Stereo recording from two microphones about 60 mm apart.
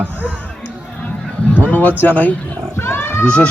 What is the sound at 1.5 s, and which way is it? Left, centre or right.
Speech, left.